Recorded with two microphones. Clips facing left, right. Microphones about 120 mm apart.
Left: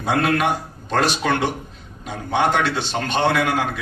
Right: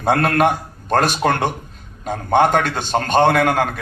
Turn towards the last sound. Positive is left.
turn(degrees=-50)  # may be behind; listen again after turning